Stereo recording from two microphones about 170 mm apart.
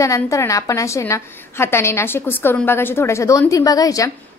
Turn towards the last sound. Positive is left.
turn(degrees=20)  # may be behind; listen again after turning